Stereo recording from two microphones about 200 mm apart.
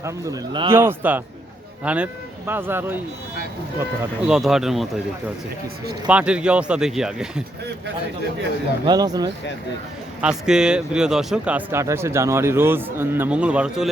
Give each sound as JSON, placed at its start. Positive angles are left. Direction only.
{"t": 0.0, "sound": "speech", "side_deg": -20}
{"t": 4.3, "sound": "speech", "side_deg": 0}
{"t": 6.1, "sound": "speech", "side_deg": -5}
{"t": 8.9, "sound": "speech", "side_deg": -20}
{"t": 10.2, "sound": "speech", "side_deg": -5}